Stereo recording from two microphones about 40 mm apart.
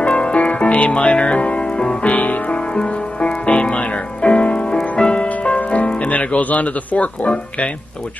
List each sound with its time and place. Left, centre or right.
0.0 s music: left
2.1 s music: left
5.3 s music: left
7.2 s speech: left